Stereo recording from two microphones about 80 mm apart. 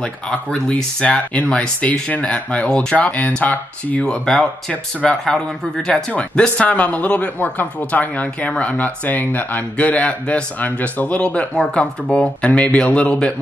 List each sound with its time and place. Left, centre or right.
0.0 s speech: centre